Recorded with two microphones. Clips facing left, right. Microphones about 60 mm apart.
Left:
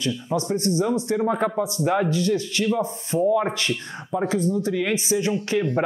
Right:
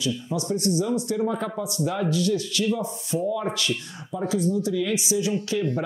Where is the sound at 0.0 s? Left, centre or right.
Left.